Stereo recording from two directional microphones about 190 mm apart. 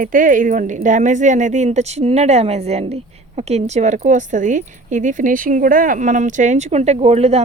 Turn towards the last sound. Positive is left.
turn(degrees=-35)  # may be behind; listen again after turning